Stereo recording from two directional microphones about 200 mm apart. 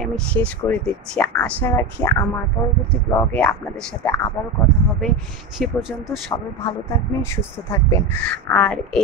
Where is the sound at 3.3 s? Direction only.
5° left (ahead or behind).